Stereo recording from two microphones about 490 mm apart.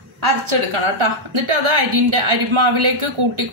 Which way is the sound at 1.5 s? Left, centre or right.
Right.